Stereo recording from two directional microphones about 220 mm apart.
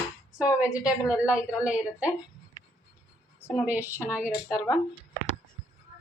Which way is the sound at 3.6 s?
10° right (ahead or behind).